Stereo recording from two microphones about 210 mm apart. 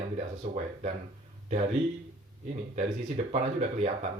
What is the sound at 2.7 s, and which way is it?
Speech, 35° right (ahead or behind).